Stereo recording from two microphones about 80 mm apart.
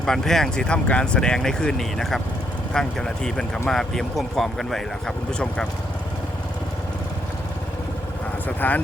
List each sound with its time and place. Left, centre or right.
0.0 s speech: centre
8.4 s speech: centre